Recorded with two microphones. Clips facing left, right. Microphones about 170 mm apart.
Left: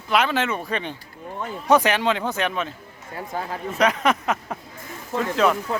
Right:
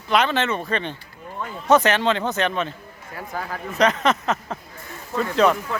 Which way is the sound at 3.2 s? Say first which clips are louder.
Left 1 dB; 25° left (ahead or behind).